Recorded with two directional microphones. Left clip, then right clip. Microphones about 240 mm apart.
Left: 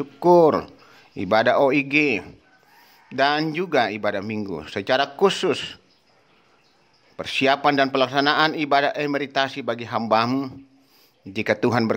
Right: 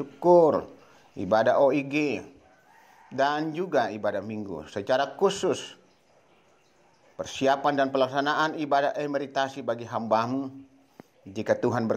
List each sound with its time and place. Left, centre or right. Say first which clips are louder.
0.0 s a man's voice: left 4 dB; left
7.2 s a man's voice: left 5 dB; centre